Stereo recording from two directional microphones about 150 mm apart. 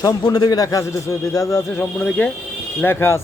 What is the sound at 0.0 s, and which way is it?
A man's voice, 25° left (ahead or behind).